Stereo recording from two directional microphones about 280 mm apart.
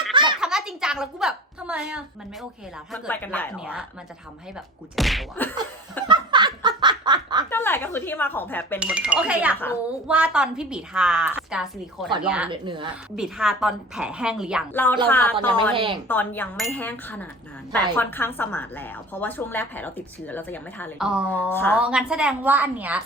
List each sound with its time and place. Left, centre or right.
0.1 s a sound: centre
0.3 s a sound: centre
2.9 s a woman's voice: centre
4.9 s a woman's voice: centre
6.1 s snicker: centre
7.5 s speech: centre
8.8 s a woman's voice: centre
12.5 s speech: centre
13.1 s a woman's voice: centre
15.7 s speech: centre
16.0 s a woman's voice: centre
21.5 s a woman's voice: centre
21.8 s a woman's voice: centre